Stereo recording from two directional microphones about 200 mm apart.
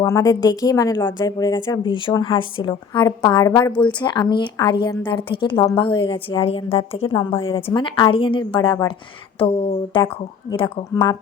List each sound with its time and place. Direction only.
0.0 s a woman's voice: 15° left (ahead or behind)